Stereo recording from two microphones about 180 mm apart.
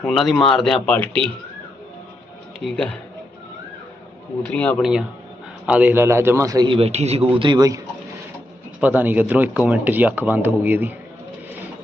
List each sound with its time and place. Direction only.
0.0 s speech: centre (ahead or behind)
4.4 s speech: 10° left (ahead or behind)
5.6 s speech: 10° right (ahead or behind); by 7.3 s 35° right (ahead or behind)
7.3 s speech: 25° right (ahead or behind)
8.8 s speech: 10° right (ahead or behind)